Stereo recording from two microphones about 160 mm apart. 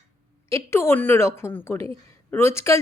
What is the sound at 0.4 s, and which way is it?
A woman's voice, 15° left (ahead or behind).